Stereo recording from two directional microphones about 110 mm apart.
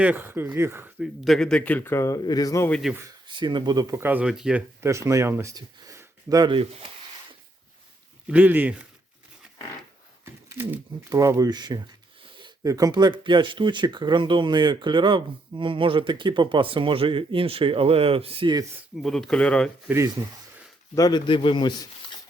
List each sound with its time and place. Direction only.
0.0 s speech: 15° right (ahead or behind)
0.9 s speech: 5° right (ahead or behind); by 2.6 s 35° left (ahead or behind)
2.8 s speech: 5° right (ahead or behind)
3.2 s speech: 45° right (ahead or behind)
3.9 s speech: 15° right (ahead or behind)
4.3 s speech: 5° right (ahead or behind)
4.8 s speech: 25° right (ahead or behind)
5.9 s gasp: 30° right (ahead or behind)
8.3 s speech: 15° right (ahead or behind)
10.2 s a sound: 20° right (ahead or behind)
11.1 s speech: 30° right (ahead or behind); by 18.5 s 55° right (ahead or behind)
18.9 s speech: centre (ahead or behind)
20.9 s a man's voice: 40° left (ahead or behind)